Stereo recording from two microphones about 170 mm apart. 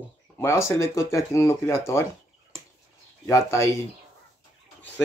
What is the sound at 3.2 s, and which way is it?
Speech, 15° left (ahead or behind).